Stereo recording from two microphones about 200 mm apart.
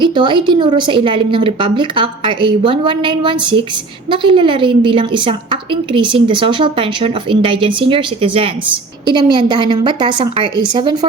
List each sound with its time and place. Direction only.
0.0 s a woman's voice: 25° right (ahead or behind)